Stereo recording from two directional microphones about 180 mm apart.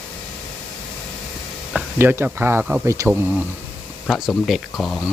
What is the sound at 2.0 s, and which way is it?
Speech, 10° right (ahead or behind).